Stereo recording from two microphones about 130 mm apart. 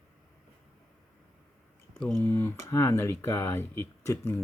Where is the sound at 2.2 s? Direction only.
20° left (ahead or behind).